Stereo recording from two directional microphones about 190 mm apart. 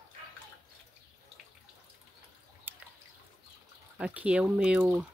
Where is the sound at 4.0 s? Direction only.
5° right (ahead or behind).